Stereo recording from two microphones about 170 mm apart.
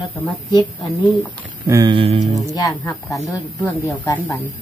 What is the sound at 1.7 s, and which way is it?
Speech, 20° right (ahead or behind).